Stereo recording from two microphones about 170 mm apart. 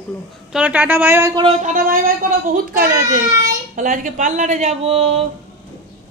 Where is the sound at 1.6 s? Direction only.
50° right (ahead or behind).